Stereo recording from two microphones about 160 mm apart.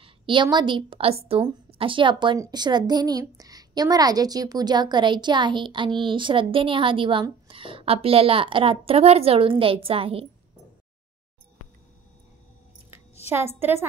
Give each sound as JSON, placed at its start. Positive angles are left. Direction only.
{"t": 0.0, "sound": "a woman's voice", "side_deg": -30}
{"t": 13.3, "sound": "a woman's voice", "side_deg": -15}